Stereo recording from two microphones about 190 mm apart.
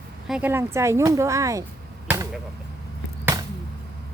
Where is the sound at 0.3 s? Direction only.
5° right (ahead or behind).